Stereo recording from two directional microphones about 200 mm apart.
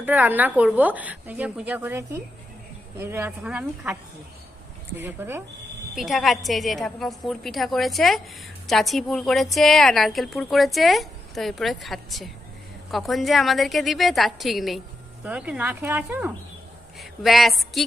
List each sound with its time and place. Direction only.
0.0 s speech: 10° right (ahead or behind)
5.0 s speech: 10° right (ahead or behind)
5.9 s a woman's voice: centre (ahead or behind)